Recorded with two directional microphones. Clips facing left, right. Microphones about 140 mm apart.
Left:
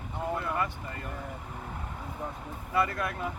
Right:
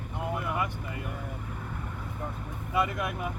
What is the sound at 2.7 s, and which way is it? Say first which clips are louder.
Speech: even; 15° right (ahead or behind).